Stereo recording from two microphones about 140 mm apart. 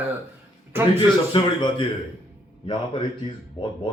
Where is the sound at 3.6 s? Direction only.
35° left (ahead or behind).